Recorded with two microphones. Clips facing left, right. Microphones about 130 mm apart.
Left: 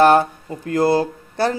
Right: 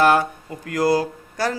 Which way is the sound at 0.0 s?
30° left (ahead or behind).